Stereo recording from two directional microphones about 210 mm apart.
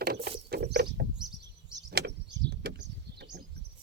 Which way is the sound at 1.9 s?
50° right (ahead or behind).